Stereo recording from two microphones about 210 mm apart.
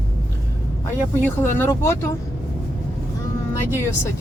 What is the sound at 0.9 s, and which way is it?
Speech, 10° left (ahead or behind).